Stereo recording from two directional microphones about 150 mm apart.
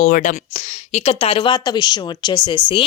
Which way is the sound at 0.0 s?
60° left (ahead or behind).